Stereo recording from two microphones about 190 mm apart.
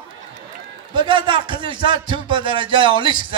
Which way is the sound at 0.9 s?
25° right (ahead or behind).